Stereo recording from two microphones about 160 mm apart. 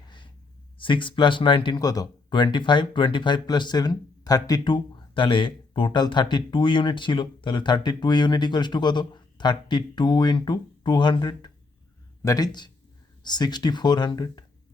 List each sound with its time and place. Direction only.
0.8 s speech: 30° left (ahead or behind)